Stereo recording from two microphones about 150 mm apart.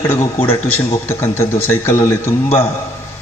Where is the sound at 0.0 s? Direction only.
20° left (ahead or behind).